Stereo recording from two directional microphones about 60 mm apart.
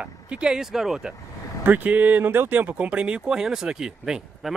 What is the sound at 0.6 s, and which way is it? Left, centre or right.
Speech, centre.